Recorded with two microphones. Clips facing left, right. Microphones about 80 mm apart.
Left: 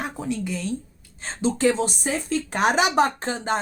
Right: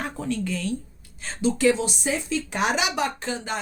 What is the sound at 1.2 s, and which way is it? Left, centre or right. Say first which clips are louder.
Speech: even; left.